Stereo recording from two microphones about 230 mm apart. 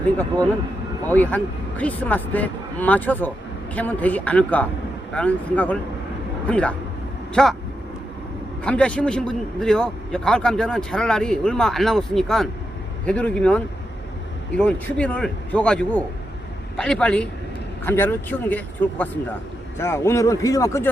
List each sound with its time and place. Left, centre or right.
1.0 s a man's voice: centre
8.6 s a man's voice: centre